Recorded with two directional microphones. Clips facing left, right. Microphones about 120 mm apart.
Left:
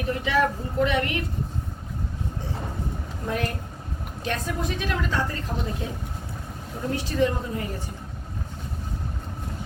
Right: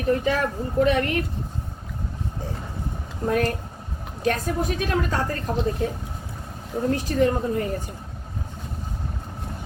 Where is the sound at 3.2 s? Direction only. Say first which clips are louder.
Right 6 dB; 40° right (ahead or behind).